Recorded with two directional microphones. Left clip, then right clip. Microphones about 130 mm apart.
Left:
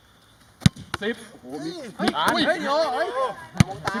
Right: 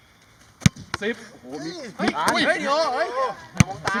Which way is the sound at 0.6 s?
10° right (ahead or behind).